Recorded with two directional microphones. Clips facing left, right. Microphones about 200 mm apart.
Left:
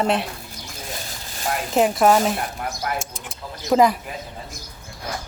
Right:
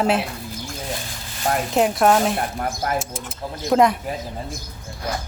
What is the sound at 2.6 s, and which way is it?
Speech, 50° right (ahead or behind).